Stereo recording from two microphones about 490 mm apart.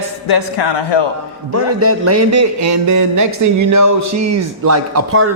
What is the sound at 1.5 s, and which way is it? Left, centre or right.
Speech, right.